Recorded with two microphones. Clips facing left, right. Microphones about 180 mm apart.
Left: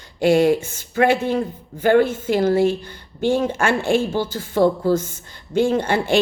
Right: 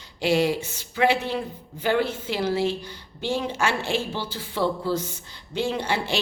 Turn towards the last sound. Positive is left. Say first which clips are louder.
# left 8 dB
turn(degrees=50)  # may be behind; listen again after turning